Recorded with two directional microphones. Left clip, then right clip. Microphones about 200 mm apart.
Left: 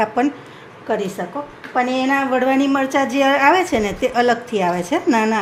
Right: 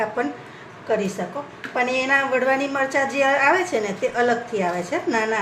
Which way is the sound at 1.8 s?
25° left (ahead or behind).